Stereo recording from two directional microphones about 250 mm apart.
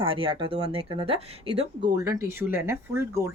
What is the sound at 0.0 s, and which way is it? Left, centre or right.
Speech, right.